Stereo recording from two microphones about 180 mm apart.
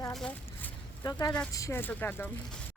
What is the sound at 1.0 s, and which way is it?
Speech, 20° left (ahead or behind).